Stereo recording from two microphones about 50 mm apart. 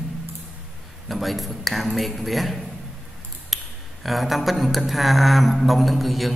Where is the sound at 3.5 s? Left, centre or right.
Centre.